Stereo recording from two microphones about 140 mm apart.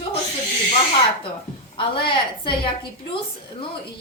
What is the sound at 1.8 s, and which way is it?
A woman's voice, 35° left (ahead or behind).